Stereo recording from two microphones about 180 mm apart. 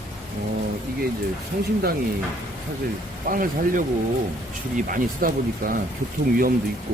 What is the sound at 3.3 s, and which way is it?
Speech, 50° right (ahead or behind).